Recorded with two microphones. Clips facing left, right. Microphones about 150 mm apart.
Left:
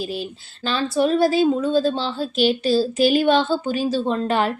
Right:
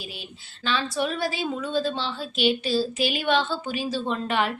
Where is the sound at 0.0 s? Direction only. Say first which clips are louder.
Left 12 dB; 40° left (ahead or behind).